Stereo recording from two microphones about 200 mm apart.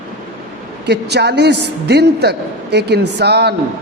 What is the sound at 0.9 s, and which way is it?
A man's voice, 55° right (ahead or behind).